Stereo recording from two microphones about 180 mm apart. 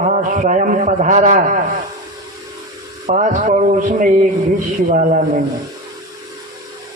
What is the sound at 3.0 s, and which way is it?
A man's voice, 45° right (ahead or behind).